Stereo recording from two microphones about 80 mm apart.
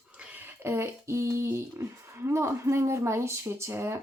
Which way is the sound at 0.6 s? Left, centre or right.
Right.